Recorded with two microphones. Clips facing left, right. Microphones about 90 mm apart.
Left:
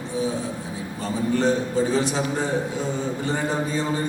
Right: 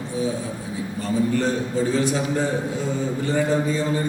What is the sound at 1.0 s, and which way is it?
A man's voice, 20° left (ahead or behind).